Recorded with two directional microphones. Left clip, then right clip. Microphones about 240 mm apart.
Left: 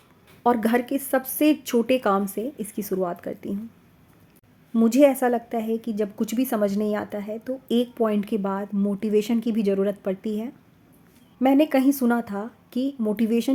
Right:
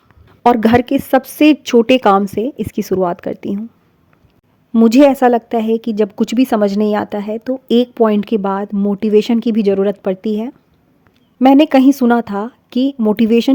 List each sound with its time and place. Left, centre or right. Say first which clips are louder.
0.4 s a woman's voice: right 10 dB; right
4.7 s a woman's voice: right 9 dB; right